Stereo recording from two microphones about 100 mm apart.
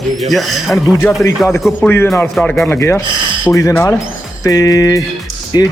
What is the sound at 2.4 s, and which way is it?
Speech, 10° left (ahead or behind).